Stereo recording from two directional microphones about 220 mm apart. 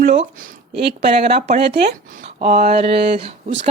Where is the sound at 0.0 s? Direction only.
35° right (ahead or behind).